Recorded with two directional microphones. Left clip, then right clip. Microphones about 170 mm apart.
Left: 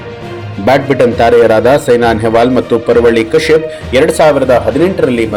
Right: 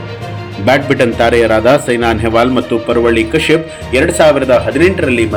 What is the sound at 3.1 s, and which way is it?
A man's voice, 30° left (ahead or behind).